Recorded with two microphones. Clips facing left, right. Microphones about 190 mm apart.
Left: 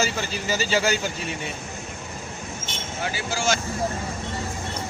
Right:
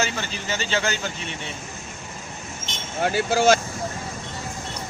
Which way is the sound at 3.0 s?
60° right (ahead or behind).